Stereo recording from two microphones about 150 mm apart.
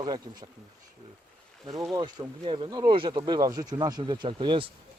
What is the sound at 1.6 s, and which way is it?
Speech, 25° right (ahead or behind).